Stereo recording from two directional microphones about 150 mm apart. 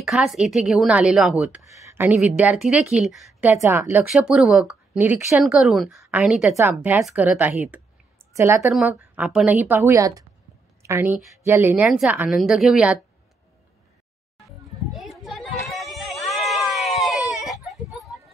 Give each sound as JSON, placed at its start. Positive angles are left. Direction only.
{"t": 0.0, "sound": "a woman's voice", "side_deg": 0}
{"t": 1.9, "sound": "a sound", "side_deg": -15}
{"t": 2.3, "sound": "a woman's voice", "side_deg": -5}
{"t": 3.4, "sound": "a woman's voice", "side_deg": -15}
{"t": 4.1, "sound": "a woman's voice", "side_deg": -5}
{"t": 5.4, "sound": "a woman's voice", "side_deg": 0}
{"t": 8.7, "sound": "a woman's voice", "side_deg": -5}
{"t": 14.4, "sound": "children playing", "side_deg": 0}
{"t": 15.6, "sound": "a sound", "side_deg": 0}
{"t": 17.5, "sound": "baby cry", "side_deg": 0}
{"t": 17.9, "sound": "a sound", "side_deg": 0}